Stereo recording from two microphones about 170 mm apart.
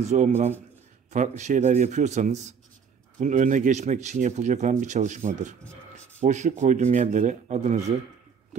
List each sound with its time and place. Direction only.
0.0 s speech: 40° right (ahead or behind)
5.6 s a sound: 5° left (ahead or behind)
6.2 s speech: 45° right (ahead or behind)